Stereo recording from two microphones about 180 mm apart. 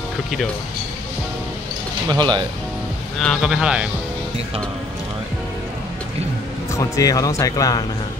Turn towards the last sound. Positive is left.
turn(degrees=20)  # may be behind; listen again after turning